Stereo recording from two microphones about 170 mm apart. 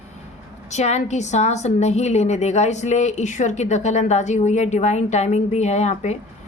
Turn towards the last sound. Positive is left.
turn(degrees=40)  # may be behind; listen again after turning